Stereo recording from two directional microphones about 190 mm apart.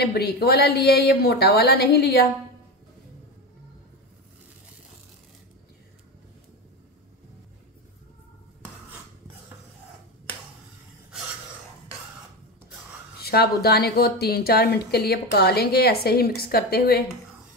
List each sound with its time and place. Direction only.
0.0 s speech: 55° left (ahead or behind)
13.2 s speech: 55° left (ahead or behind)